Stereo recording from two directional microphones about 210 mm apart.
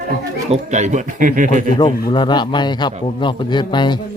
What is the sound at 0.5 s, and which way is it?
Speech, 35° right (ahead or behind).